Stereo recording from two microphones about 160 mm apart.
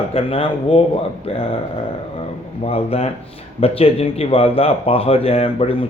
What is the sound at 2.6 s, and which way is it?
Speech, 40° left (ahead or behind).